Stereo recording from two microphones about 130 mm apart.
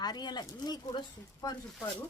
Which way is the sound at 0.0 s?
30° left (ahead or behind).